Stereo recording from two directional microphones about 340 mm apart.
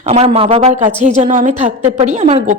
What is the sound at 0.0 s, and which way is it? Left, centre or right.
A woman's voice, centre.